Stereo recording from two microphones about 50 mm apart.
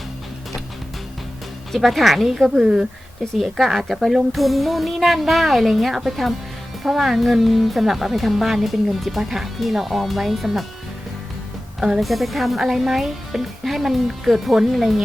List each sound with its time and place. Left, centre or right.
1.7 s speech: centre
2.6 s speech: centre
3.3 s speech: centre
11.8 s speech: centre